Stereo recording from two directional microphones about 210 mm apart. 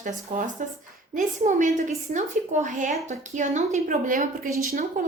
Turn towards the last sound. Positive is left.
turn(degrees=-40)  # may be behind; listen again after turning